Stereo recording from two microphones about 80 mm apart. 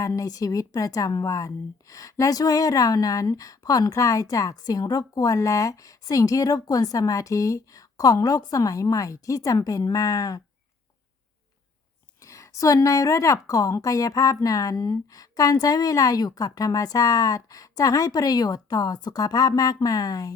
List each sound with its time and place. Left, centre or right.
0.0 s a woman's voice: left
12.2 s a woman's voice: left